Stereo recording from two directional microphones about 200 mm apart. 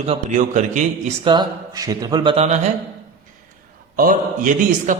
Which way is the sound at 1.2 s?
25° right (ahead or behind).